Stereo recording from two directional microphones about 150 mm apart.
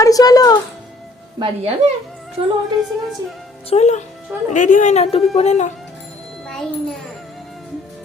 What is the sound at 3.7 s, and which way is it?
A woman's voice, 50° left (ahead or behind).